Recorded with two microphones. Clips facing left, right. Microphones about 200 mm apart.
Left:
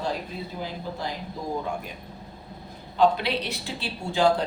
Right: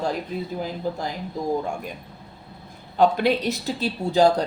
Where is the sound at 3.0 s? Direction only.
45° right (ahead or behind).